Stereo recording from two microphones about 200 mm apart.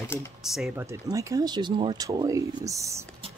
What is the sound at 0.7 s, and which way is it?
Speech, 15° right (ahead or behind).